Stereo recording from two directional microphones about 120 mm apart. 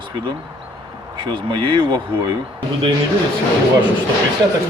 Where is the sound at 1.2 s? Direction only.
45° right (ahead or behind).